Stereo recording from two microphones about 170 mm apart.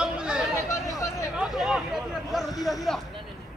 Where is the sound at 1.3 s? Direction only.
5° right (ahead or behind).